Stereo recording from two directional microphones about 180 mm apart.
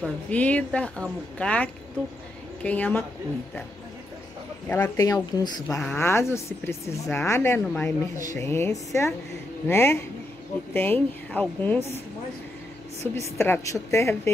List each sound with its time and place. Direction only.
0.3 s speech: 10° left (ahead or behind)
4.6 s speech: 10° left (ahead or behind)
5.8 s speech: 10° left (ahead or behind)
13.1 s speech: 15° left (ahead or behind)